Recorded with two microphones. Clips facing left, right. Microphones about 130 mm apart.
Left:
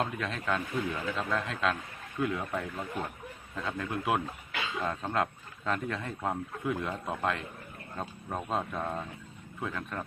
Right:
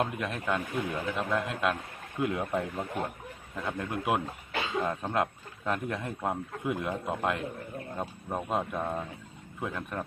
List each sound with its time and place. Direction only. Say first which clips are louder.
0.0 s a man's voice: right 2 dB; 15° right (ahead or behind)